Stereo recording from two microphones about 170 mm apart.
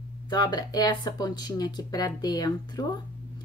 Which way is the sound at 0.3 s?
25° left (ahead or behind).